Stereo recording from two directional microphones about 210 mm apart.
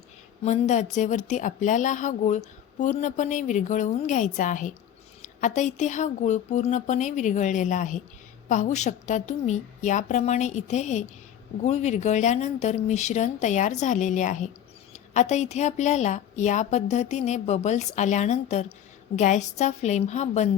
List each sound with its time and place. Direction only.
0.4 s speech: 35° left (ahead or behind)